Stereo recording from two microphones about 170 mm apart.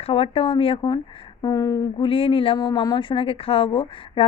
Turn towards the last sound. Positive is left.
turn(degrees=30)  # may be behind; listen again after turning